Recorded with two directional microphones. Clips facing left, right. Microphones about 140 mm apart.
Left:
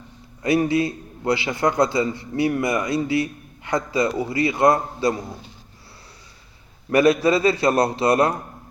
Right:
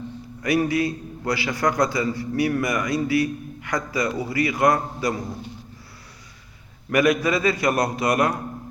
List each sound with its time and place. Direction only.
0.4 s a man's voice: 25° left (ahead or behind)
6.9 s a man's voice: 30° left (ahead or behind)